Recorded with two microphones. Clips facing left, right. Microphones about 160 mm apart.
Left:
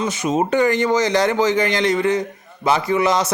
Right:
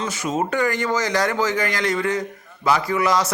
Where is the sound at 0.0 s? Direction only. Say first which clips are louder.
Left 4 dB; 20° left (ahead or behind).